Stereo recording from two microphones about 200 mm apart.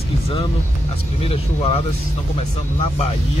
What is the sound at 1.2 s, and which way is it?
Speech, 30° left (ahead or behind).